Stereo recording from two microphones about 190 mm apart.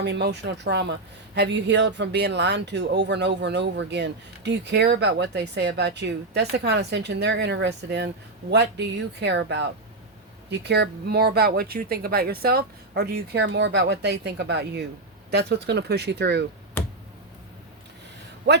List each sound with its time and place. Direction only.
0.0 s speech: 65° right (ahead or behind)
16.8 s a sound: 10° left (ahead or behind)
18.5 s speech: 65° right (ahead or behind)